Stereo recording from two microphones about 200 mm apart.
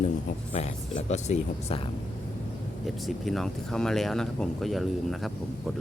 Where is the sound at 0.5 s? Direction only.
35° left (ahead or behind).